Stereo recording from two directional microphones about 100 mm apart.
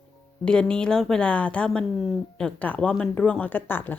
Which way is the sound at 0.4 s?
10° left (ahead or behind).